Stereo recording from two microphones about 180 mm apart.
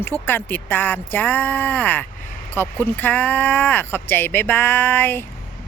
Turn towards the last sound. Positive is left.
turn(degrees=10)  # may be behind; listen again after turning